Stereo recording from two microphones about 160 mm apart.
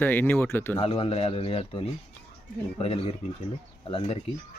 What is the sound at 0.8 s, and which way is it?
Speech, 35° left (ahead or behind).